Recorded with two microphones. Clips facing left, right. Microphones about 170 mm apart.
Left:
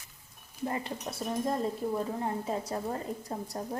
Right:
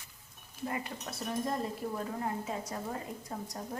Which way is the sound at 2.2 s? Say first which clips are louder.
Left 3 dB; 30° left (ahead or behind).